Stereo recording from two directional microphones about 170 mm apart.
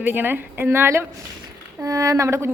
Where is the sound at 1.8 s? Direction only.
20° right (ahead or behind).